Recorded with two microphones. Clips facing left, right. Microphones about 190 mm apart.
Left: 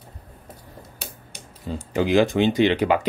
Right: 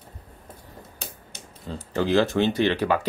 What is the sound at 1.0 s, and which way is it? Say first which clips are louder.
Speech: left 1 dB; 15° left (ahead or behind).